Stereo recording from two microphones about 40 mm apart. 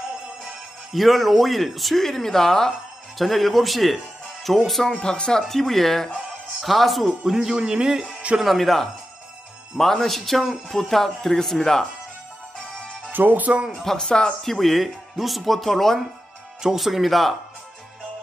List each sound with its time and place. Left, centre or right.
0.9 s speech: centre
5.0 s speech: left
5.5 s speech: centre
7.2 s speech: centre
8.4 s speech: centre
13.1 s speech: right
13.5 s speech: right
13.7 s speech: centre
14.0 s speech: left
14.4 s speech: centre
16.6 s speech: centre